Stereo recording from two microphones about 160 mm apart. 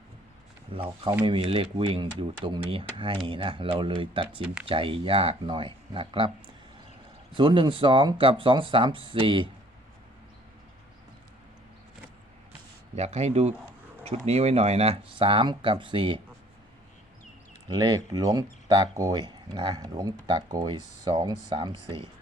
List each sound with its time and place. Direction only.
0.7 s speech: 35° right (ahead or behind)
7.3 s speech: 30° right (ahead or behind)
13.0 s speech: 40° right (ahead or behind)
17.7 s speech: 25° right (ahead or behind)